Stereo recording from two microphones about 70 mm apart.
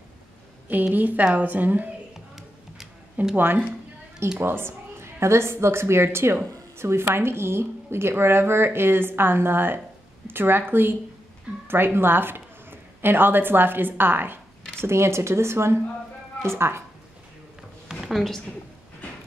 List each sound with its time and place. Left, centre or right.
0.7 s a woman's voice: right
2.1 s music: centre
3.3 s a woman's voice: right
18.1 s a woman's voice: centre